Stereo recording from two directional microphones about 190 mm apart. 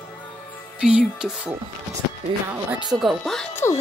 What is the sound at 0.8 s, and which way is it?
Speech, 5° right (ahead or behind).